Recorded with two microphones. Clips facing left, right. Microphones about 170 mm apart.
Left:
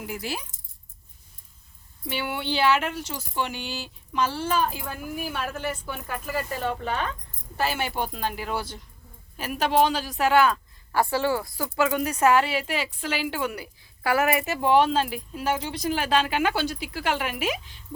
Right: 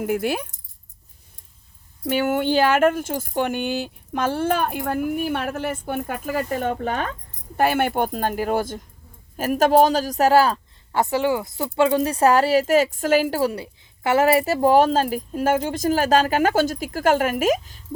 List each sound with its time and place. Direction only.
0.0 s speech: 55° right (ahead or behind)
2.0 s speech: 45° right (ahead or behind)
10.9 s speech: 20° right (ahead or behind); by 17.8 s 45° right (ahead or behind)